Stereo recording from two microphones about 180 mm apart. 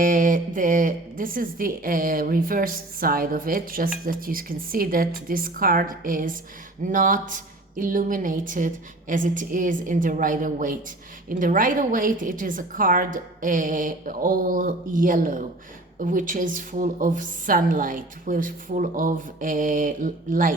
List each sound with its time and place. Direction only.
0.0 s speech: 50° right (ahead or behind)